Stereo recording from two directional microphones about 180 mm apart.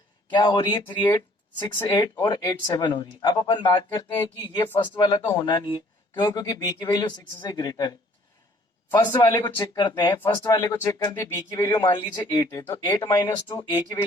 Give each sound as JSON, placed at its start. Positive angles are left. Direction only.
{"t": 0.3, "sound": "speech", "side_deg": 25}
{"t": 11.9, "sound": "speech", "side_deg": 25}